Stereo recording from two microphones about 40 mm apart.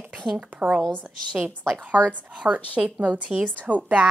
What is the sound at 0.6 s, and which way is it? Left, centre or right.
Speech, right.